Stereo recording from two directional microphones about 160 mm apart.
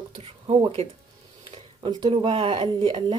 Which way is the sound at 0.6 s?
35° right (ahead or behind).